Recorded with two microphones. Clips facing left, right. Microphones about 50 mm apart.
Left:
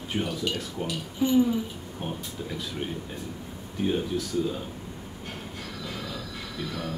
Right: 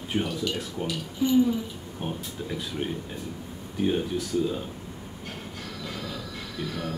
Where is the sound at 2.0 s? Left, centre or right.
Centre.